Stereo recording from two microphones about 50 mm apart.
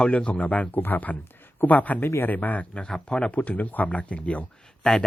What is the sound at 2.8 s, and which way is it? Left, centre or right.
Speech, centre.